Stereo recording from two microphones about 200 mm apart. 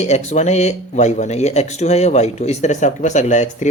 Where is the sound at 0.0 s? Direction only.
35° left (ahead or behind).